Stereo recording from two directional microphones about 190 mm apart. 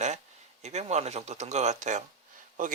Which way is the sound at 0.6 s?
35° right (ahead or behind).